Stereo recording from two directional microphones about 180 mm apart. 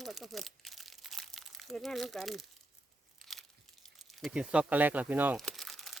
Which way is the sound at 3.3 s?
Centre (ahead or behind).